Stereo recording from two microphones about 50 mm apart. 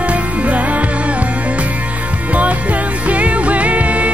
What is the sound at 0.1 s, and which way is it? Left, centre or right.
Music, right.